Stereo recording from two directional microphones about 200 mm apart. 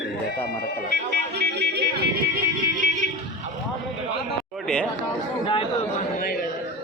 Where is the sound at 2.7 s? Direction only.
40° right (ahead or behind).